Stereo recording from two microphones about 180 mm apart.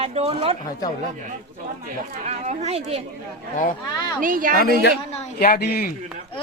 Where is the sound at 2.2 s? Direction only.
40° right (ahead or behind).